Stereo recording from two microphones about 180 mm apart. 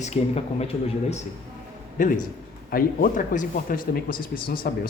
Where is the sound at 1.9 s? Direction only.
50° left (ahead or behind).